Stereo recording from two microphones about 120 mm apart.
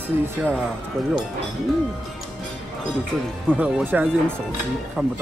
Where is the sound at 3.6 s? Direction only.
15° right (ahead or behind).